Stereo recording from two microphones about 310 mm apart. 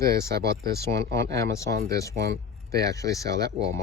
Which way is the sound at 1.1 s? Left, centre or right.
Centre.